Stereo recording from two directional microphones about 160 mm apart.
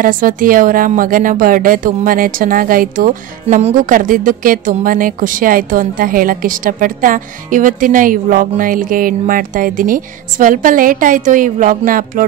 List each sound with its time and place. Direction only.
0.0 s speech: 60° right (ahead or behind)